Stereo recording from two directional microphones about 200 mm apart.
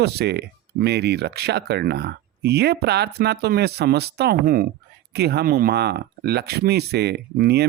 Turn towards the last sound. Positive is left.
turn(degrees=-55)  # may be behind; listen again after turning